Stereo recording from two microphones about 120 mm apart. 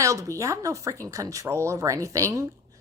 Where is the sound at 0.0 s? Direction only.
25° right (ahead or behind).